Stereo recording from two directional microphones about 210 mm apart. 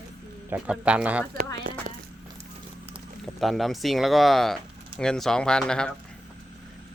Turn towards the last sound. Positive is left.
turn(degrees=5)  # may be behind; listen again after turning